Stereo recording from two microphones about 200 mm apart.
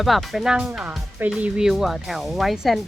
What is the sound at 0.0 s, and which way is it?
Speech, centre (ahead or behind).